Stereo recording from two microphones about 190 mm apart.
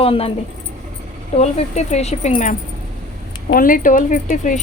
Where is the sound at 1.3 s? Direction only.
35° left (ahead or behind).